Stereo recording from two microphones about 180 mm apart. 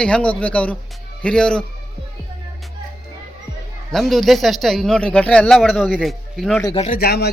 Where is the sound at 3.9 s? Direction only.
Centre (ahead or behind).